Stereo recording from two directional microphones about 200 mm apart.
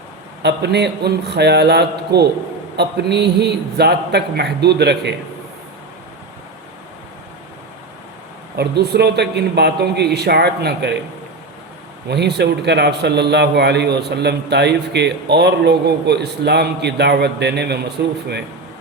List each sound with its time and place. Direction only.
0.4 s a man's voice: 55° right (ahead or behind)
8.5 s a man's voice: 55° right (ahead or behind)
12.0 s a man's voice: 55° right (ahead or behind)